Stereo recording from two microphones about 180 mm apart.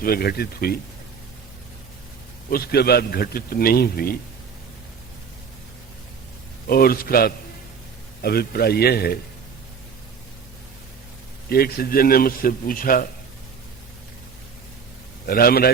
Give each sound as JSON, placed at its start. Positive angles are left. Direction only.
{"t": 0.0, "sound": "a man's voice", "side_deg": 55}
{"t": 2.5, "sound": "a man's voice", "side_deg": 60}
{"t": 6.7, "sound": "a man's voice", "side_deg": 55}
{"t": 11.4, "sound": "a man's voice", "side_deg": 55}
{"t": 15.3, "sound": "a man's voice", "side_deg": 55}